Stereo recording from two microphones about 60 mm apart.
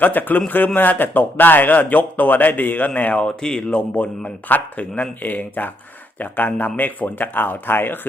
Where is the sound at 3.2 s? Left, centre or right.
Centre.